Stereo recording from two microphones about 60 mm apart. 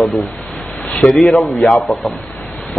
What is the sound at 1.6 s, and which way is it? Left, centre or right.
Speech, left.